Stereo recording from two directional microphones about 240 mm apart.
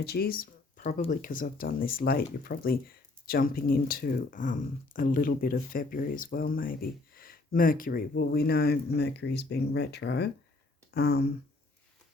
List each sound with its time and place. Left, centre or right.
0.0 s speech: left